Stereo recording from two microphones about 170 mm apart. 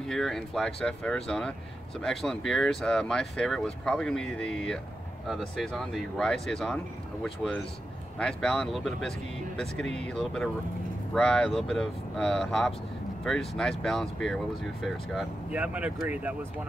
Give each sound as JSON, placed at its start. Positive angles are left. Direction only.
{"t": 0.0, "sound": "speech", "side_deg": 5}